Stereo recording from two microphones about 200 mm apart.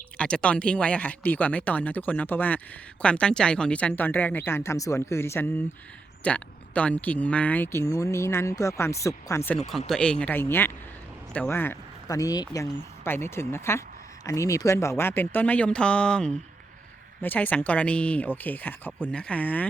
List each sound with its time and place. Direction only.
0.2 s speech: 5° left (ahead or behind)
9.6 s speech: centre (ahead or behind)